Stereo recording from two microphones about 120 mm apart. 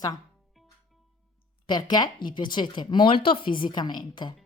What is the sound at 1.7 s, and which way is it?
A woman's voice, 35° left (ahead or behind).